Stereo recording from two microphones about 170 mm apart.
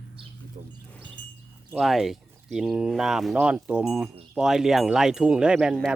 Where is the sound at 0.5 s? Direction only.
55° right (ahead or behind).